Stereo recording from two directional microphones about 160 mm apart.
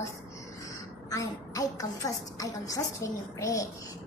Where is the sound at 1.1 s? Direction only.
20° left (ahead or behind).